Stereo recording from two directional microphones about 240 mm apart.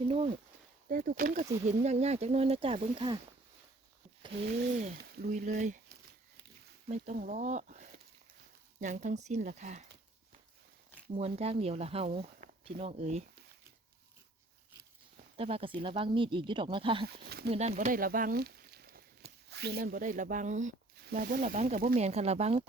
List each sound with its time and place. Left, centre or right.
0.9 s speech: right
4.2 s a sound: right
4.4 s speech: right
6.8 s speech: right
11.2 s speech: right
15.4 s speech: right
17.1 s speech: right
17.5 s speech: right